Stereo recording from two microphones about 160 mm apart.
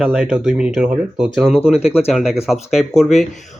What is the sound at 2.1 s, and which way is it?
Speech, 5° right (ahead or behind).